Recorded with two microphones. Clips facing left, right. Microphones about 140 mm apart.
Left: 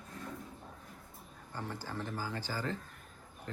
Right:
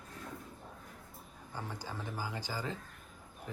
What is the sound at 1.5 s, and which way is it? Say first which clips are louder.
Speech: left 2 dB; 15° right (ahead or behind).